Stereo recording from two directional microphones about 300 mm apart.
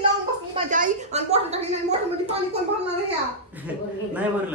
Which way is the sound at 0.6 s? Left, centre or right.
Right.